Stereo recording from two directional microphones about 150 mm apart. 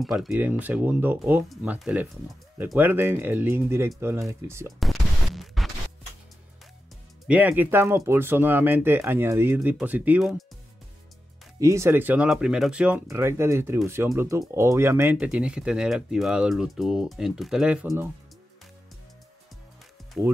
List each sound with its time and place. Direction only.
0.0 s speech: centre (ahead or behind)
0.3 s speech: 10° right (ahead or behind)
4.7 s a sound: centre (ahead or behind)
7.2 s speech: 10° right (ahead or behind)
11.6 s speech: 20° right (ahead or behind)
15.1 s speech: 5° right (ahead or behind)